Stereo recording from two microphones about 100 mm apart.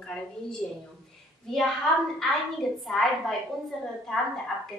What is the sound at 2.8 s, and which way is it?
Speech, 5° left (ahead or behind).